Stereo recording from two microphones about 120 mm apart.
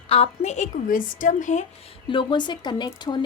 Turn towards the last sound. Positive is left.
turn(degrees=40)  # may be behind; listen again after turning